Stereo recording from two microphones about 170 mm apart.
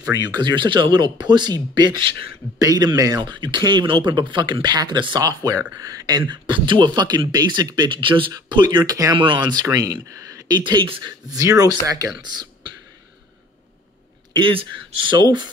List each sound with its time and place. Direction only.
0.1 s speech: 25° right (ahead or behind)
14.3 s speech: 30° right (ahead or behind)